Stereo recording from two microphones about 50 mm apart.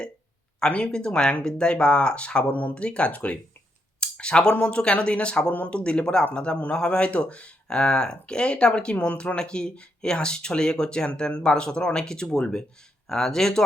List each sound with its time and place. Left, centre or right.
0.7 s speech: centre
2.5 s speech: left
2.7 s speech: left
4.0 s a sound: centre
4.5 s speech: left